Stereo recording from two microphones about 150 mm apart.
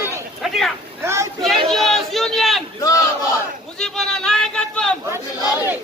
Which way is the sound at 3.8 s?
5° left (ahead or behind).